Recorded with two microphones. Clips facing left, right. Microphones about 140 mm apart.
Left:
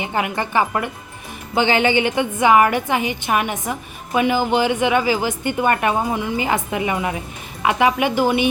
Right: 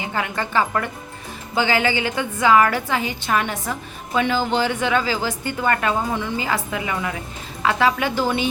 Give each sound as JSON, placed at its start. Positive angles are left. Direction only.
{"t": 0.0, "sound": "a woman's voice", "side_deg": 20}